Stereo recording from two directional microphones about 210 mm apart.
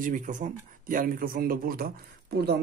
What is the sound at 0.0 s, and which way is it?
Speech, 40° right (ahead or behind).